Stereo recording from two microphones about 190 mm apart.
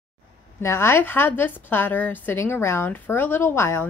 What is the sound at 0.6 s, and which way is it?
A woman's voice, 15° left (ahead or behind).